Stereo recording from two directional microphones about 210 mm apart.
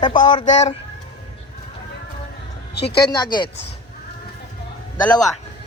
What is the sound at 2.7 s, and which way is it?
Speech, 50° left (ahead or behind).